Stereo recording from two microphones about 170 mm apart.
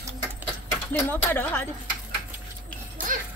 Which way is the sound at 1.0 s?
10° left (ahead or behind).